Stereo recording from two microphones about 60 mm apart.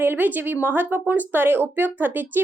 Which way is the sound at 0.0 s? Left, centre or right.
Right.